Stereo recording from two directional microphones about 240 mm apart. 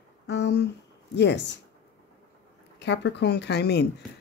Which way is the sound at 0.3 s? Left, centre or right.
Left.